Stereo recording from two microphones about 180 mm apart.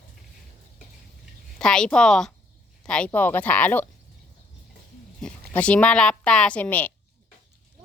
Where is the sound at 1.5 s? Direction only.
5° left (ahead or behind).